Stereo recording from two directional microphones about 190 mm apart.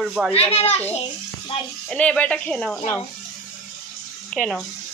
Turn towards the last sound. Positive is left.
turn(degrees=5)  # may be behind; listen again after turning